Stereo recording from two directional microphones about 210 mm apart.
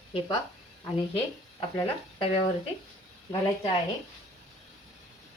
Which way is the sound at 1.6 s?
25° left (ahead or behind).